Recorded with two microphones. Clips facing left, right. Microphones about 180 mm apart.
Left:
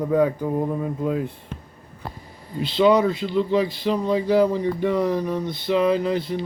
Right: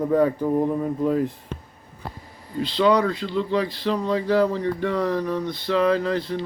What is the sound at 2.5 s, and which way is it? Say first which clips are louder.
Speech: left 2 dB; 15° left (ahead or behind).